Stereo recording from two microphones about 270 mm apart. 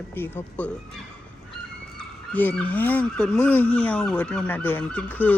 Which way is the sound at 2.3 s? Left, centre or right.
Centre.